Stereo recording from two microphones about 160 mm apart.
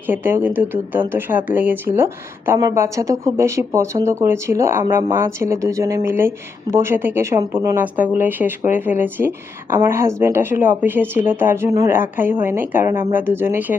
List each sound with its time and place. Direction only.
0.1 s speech: 15° right (ahead or behind)